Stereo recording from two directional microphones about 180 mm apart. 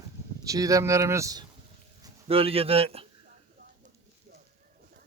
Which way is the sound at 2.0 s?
30° right (ahead or behind).